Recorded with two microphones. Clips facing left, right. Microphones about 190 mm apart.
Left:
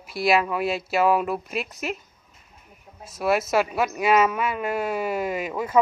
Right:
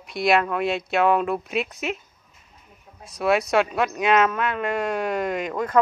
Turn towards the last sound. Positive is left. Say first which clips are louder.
# right 1 dB
turn(degrees=5)  # may be behind; listen again after turning